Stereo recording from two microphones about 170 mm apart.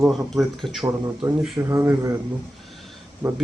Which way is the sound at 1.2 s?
20° right (ahead or behind).